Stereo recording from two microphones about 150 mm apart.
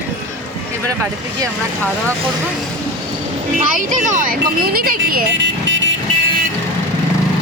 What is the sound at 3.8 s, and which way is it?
Speech, 55° right (ahead or behind).